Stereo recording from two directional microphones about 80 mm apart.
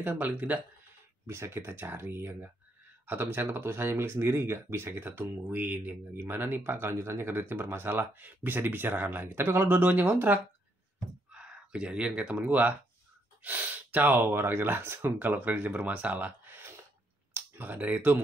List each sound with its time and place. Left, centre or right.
0.2 s speech: centre
1.2 s speech: right
3.5 s speech: right
11.3 s speech: centre